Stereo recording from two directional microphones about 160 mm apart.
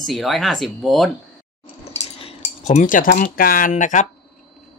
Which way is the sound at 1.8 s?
40° left (ahead or behind).